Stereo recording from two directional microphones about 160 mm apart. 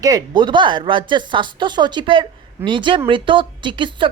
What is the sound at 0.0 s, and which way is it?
Speech, 25° right (ahead or behind).